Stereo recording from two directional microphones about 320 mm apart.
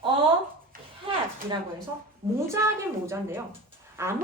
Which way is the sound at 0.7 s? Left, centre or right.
Right.